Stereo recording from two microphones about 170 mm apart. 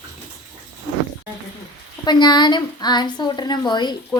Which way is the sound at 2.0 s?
25° left (ahead or behind).